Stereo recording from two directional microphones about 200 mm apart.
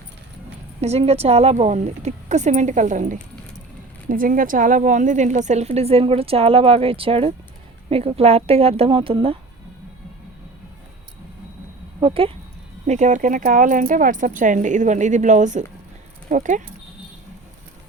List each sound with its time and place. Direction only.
0.8 s a woman's voice: 30° right (ahead or behind)
11.9 s a woman's voice: 25° right (ahead or behind)